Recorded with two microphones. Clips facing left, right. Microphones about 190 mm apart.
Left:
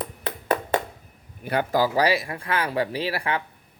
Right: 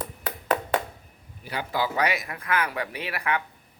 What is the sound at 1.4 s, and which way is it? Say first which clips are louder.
Speech: left 8 dB; 55° left (ahead or behind).